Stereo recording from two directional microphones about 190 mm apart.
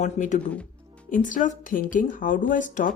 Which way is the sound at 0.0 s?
40° left (ahead or behind).